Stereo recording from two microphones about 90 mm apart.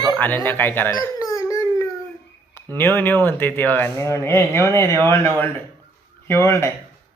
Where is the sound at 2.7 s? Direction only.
20° left (ahead or behind).